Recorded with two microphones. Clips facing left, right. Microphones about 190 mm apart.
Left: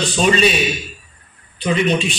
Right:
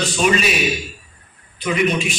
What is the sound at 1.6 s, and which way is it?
Speech, 30° left (ahead or behind).